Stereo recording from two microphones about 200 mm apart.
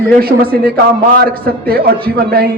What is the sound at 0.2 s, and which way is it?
A man's voice, 50° right (ahead or behind).